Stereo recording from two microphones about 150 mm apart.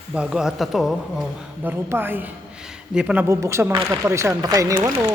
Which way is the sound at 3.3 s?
20° right (ahead or behind).